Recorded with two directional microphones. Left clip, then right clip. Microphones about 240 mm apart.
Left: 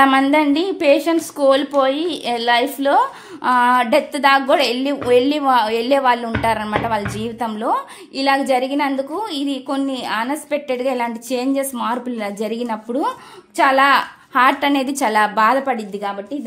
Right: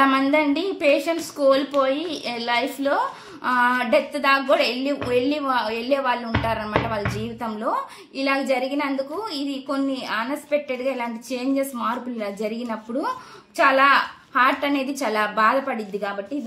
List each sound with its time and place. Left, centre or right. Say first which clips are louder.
0.0 s a woman's voice: left 5 dB; left